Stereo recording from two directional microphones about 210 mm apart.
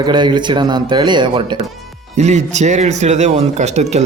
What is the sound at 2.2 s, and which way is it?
Speech, 35° right (ahead or behind).